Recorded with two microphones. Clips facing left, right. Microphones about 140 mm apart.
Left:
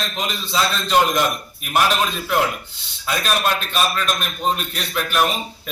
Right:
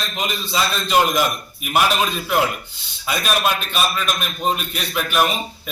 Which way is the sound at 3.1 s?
10° right (ahead or behind).